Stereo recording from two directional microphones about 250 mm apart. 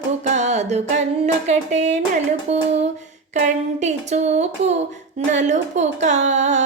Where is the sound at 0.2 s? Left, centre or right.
Right.